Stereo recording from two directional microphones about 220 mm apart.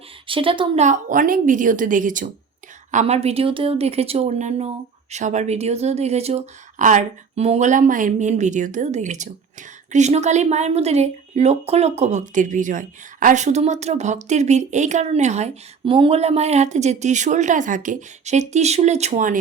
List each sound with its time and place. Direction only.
0.3 s speech: 25° right (ahead or behind)